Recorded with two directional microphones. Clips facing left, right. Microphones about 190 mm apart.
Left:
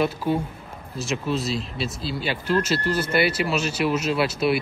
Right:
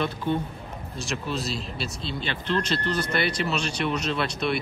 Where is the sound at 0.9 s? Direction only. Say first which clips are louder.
Left 5 dB; centre (ahead or behind).